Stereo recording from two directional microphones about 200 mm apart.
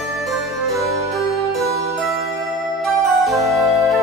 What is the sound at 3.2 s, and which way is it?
Music, centre (ahead or behind).